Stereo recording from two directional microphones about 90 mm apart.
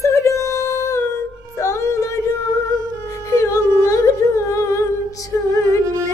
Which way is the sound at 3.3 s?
35° left (ahead or behind).